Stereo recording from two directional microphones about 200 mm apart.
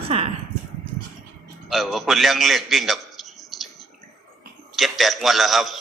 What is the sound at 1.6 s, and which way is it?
A man's voice, centre (ahead or behind).